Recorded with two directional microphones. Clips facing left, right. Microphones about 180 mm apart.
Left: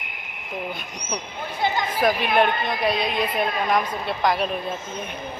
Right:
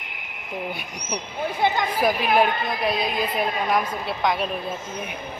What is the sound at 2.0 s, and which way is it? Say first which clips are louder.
A woman's voice: left 1 dB; 5° right (ahead or behind).